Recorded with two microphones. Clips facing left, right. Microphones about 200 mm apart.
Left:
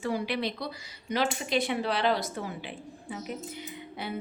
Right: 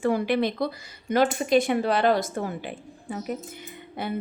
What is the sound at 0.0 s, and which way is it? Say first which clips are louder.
A woman's voice: right 7 dB; 55° right (ahead or behind).